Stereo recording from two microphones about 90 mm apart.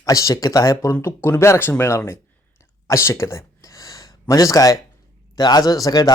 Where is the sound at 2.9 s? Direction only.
30° left (ahead or behind).